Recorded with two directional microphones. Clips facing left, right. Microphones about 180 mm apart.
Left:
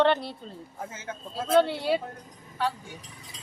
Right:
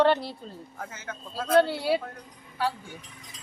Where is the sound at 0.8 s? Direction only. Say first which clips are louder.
Left 2 dB; 25° left (ahead or behind).